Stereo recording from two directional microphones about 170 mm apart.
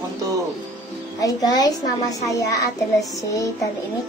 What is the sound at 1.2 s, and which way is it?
Speech, 20° left (ahead or behind).